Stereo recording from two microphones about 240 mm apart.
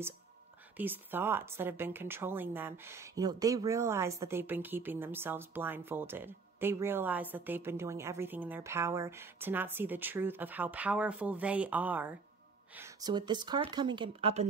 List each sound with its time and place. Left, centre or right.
0.7 s a woman's voice: centre; by 14.5 s right